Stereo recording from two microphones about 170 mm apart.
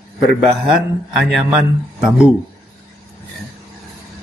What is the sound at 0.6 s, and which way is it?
Speech, 5° right (ahead or behind).